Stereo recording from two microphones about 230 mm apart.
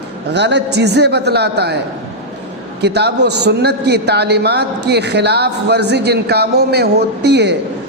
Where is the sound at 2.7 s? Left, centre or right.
Right.